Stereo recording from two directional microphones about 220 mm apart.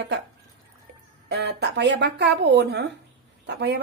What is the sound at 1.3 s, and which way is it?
Speech, 50° right (ahead or behind).